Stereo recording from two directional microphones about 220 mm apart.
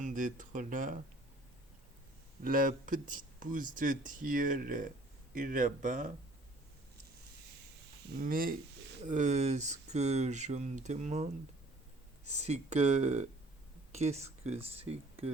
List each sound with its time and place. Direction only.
0.0 s speech: 35° right (ahead or behind)
2.4 s speech: 40° right (ahead or behind)
8.2 s speech: 40° right (ahead or behind)
12.4 s speech: 30° right (ahead or behind)